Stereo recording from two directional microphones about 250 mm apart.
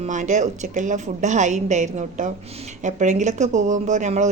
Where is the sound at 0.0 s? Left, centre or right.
Right.